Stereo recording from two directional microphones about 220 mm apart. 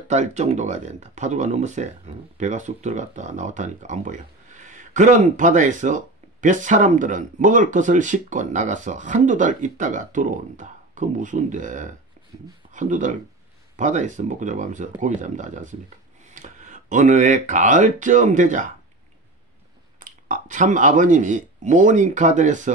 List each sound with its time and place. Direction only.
0.1 s speech: 30° right (ahead or behind)
20.0 s speech: 35° right (ahead or behind)